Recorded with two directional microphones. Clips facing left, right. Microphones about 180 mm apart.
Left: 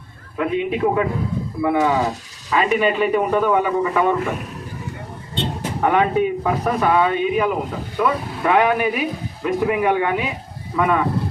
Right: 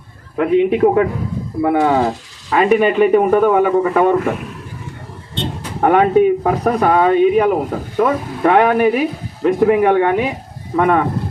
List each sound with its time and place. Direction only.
0.3 s speech: 50° right (ahead or behind)
5.8 s speech: 45° right (ahead or behind)